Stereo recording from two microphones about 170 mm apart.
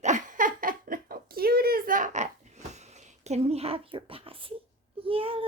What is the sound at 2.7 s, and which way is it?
Speech, 40° right (ahead or behind).